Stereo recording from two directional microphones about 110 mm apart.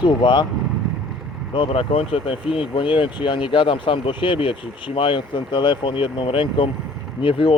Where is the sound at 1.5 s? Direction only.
55° left (ahead or behind).